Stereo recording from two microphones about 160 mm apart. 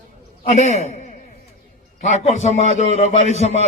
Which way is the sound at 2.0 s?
45° left (ahead or behind).